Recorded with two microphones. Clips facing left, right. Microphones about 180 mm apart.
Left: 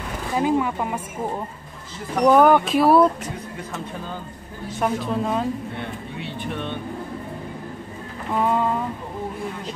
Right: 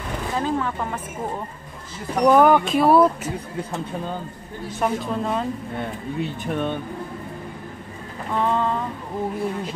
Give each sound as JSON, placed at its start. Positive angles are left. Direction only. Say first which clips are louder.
{"t": 0.4, "sound": "speech", "louder": "left 5 dB", "side_deg": 15}
{"t": 2.2, "sound": "speech", "louder": "even", "side_deg": 0}
{"t": 4.7, "sound": "speech", "louder": "left 1 dB", "side_deg": 0}
{"t": 5.8, "sound": "speech", "louder": "right 4 dB", "side_deg": -45}
{"t": 8.4, "sound": "speech", "louder": "left 1 dB", "side_deg": 10}